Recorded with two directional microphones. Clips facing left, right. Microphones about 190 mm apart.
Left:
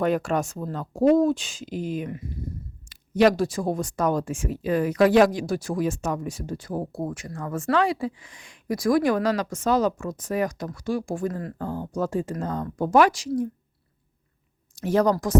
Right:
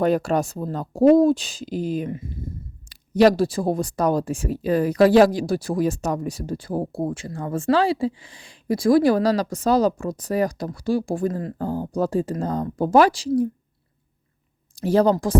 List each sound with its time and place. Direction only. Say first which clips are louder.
0.0 s speech: right 3 dB; 35° right (ahead or behind)
14.8 s speech: right 3 dB; 30° right (ahead or behind)